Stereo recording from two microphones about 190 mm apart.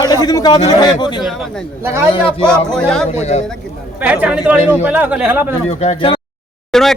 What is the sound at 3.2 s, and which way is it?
Speech, 35° left (ahead or behind).